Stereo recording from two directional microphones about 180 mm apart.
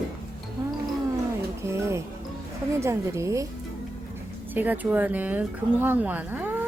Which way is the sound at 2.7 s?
15° right (ahead or behind).